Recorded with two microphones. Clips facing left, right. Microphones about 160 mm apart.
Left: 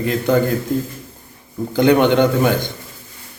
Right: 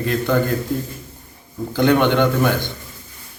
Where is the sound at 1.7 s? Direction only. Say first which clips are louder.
Left 3 dB; 15° left (ahead or behind).